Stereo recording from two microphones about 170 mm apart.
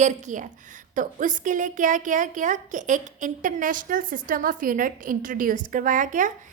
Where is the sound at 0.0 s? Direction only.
45° right (ahead or behind).